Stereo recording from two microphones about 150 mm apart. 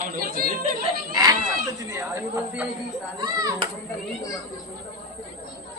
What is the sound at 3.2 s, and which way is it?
Speech, 25° right (ahead or behind).